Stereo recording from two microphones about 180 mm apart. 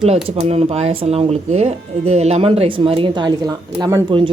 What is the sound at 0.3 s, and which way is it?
Speech, 35° right (ahead or behind).